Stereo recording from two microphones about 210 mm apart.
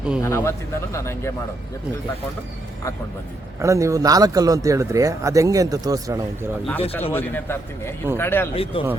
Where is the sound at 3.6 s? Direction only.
15° right (ahead or behind).